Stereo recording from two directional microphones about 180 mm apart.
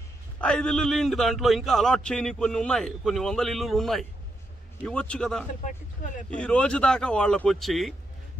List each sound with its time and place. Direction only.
0.4 s a man's voice: 5° left (ahead or behind)
6.0 s speech: 45° left (ahead or behind)
6.3 s a man's voice: 5° left (ahead or behind)